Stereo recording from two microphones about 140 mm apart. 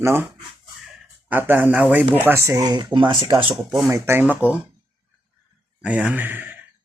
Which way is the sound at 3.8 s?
15° right (ahead or behind).